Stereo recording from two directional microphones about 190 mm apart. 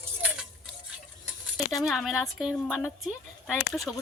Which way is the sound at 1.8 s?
Centre (ahead or behind).